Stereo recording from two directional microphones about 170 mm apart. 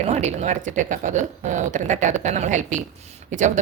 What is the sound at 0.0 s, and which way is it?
A woman's voice, 40° right (ahead or behind).